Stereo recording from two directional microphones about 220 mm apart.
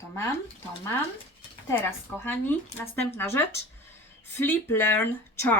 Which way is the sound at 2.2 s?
10° left (ahead or behind).